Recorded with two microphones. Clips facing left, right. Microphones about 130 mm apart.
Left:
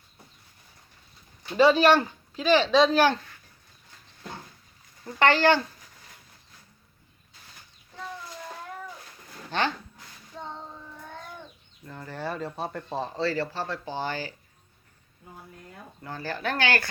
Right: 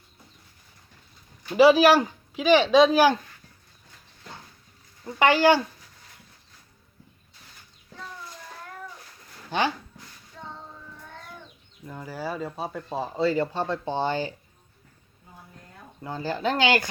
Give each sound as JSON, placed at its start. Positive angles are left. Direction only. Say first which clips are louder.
{"t": 1.5, "sound": "speech", "louder": "right 3 dB", "side_deg": -10}
{"t": 5.0, "sound": "speech", "louder": "right 2 dB", "side_deg": -10}
{"t": 9.5, "sound": "speech", "louder": "right 2 dB", "side_deg": -10}
{"t": 10.4, "sound": "child singing", "louder": "left 3 dB", "side_deg": 25}
{"t": 11.9, "sound": "speech", "louder": "right 1 dB", "side_deg": -10}
{"t": 13.2, "sound": "speech", "louder": "right 6 dB", "side_deg": -20}
{"t": 16.0, "sound": "speech", "louder": "right 4 dB", "side_deg": -20}